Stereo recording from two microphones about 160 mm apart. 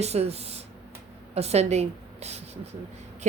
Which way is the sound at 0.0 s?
40° right (ahead or behind).